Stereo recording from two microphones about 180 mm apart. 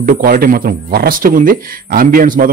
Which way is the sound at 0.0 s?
50° right (ahead or behind).